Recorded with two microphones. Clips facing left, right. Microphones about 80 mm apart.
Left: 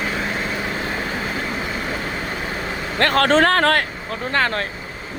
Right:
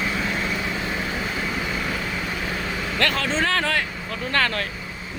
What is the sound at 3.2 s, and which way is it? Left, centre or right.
Speech, left.